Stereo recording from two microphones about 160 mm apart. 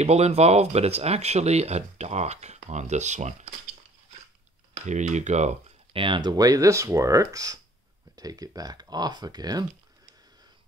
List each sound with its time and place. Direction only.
0.0 s speech: 40° right (ahead or behind)
4.8 s speech: 50° right (ahead or behind)
6.0 s speech: 30° right (ahead or behind)